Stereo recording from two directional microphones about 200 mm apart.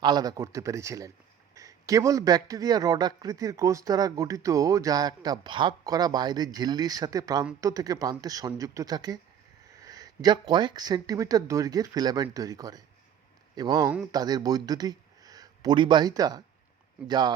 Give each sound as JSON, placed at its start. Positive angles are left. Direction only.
{"t": 0.0, "sound": "speech", "side_deg": -20}